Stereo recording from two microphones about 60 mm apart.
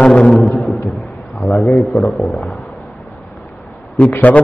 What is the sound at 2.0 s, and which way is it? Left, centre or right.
Speech, centre.